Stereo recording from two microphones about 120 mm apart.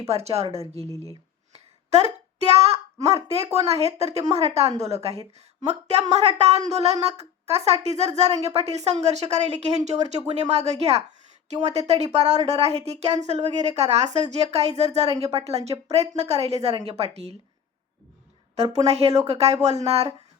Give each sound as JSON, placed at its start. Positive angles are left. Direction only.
{"t": 0.1, "sound": "a woman's voice", "side_deg": -60}
{"t": 0.8, "sound": "speech", "side_deg": 30}
{"t": 1.9, "sound": "a woman's voice", "side_deg": -65}
{"t": 18.5, "sound": "a woman's voice", "side_deg": -60}